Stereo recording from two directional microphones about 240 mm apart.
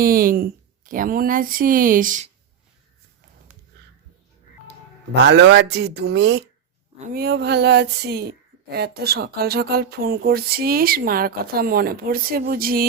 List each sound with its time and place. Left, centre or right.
0.0 s speech: right
5.1 s speech: right